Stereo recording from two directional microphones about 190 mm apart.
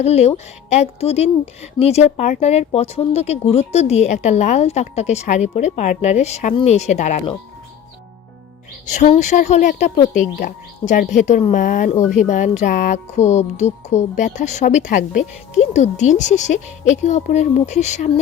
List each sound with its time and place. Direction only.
0.0 s music: 35° left (ahead or behind)
8.9 s music: 40° left (ahead or behind)